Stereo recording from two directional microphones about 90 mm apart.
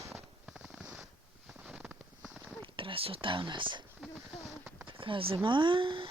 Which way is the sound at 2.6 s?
75° right (ahead or behind).